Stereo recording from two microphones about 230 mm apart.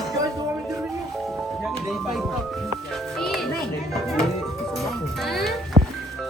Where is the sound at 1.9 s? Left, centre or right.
Centre.